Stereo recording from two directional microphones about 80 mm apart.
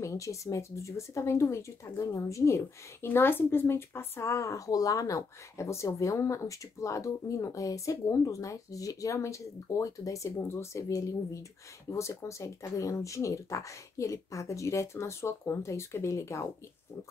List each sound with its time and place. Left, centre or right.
0.0 s speech: left
3.1 s speech: left